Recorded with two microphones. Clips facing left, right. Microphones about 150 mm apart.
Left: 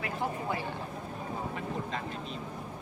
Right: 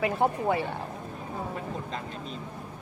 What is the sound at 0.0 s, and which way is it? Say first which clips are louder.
Speech: right 8 dB; 70° right (ahead or behind).